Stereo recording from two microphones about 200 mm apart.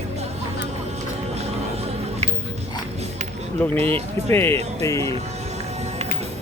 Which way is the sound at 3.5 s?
10° left (ahead or behind).